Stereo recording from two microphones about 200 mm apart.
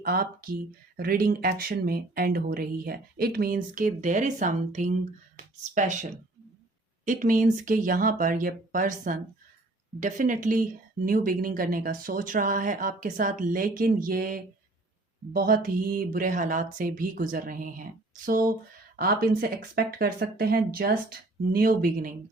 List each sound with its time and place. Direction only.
0.0 s speech: 50° right (ahead or behind)